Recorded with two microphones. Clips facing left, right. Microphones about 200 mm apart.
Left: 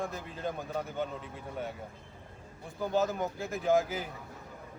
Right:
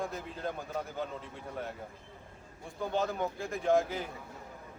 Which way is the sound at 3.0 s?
5° left (ahead or behind).